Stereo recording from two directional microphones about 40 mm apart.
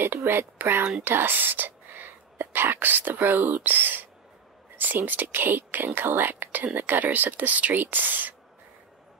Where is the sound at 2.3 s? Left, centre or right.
Right.